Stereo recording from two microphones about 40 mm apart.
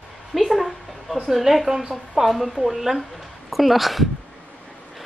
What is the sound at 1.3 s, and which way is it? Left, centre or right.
Speech, centre.